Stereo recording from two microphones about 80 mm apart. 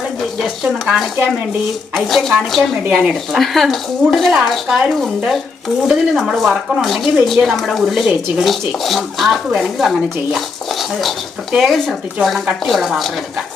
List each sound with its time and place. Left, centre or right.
0.6 s speech: centre
11.5 s speech: centre